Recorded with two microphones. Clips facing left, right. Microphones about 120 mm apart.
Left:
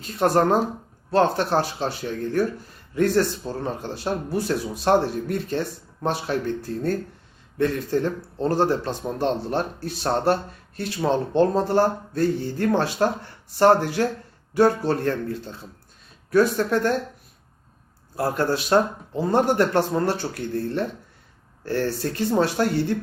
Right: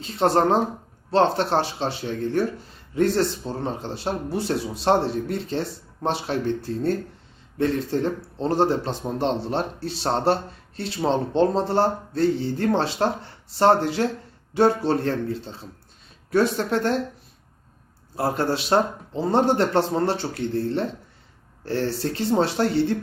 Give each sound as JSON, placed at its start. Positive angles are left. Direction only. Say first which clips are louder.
{"t": 0.0, "sound": "speech", "louder": "even", "side_deg": -25}
{"t": 18.2, "sound": "speech", "louder": "even", "side_deg": -25}